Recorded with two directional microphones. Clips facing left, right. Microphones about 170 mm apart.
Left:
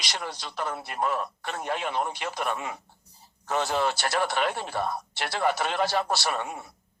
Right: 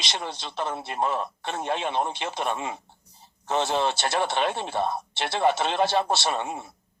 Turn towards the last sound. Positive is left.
turn(degrees=-25)  # may be behind; listen again after turning